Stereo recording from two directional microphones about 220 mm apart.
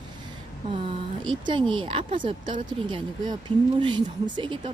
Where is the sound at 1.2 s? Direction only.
20° right (ahead or behind).